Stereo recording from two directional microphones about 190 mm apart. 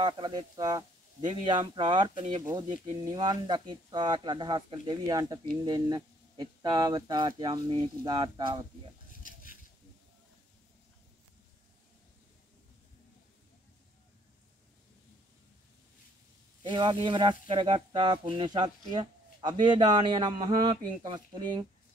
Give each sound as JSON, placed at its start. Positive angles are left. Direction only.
{"t": 0.0, "sound": "speech", "side_deg": -25}
{"t": 16.6, "sound": "speech", "side_deg": -25}